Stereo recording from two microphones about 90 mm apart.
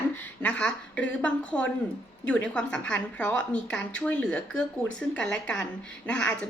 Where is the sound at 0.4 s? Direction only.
10° left (ahead or behind).